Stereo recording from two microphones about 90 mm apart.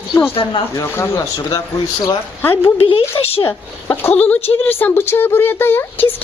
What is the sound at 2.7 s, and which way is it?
Speech, 90° left.